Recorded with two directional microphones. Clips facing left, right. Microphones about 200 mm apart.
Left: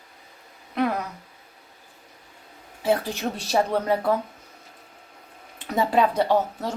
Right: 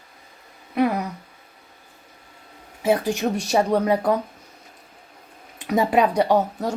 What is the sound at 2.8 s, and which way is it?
Speech, 15° right (ahead or behind).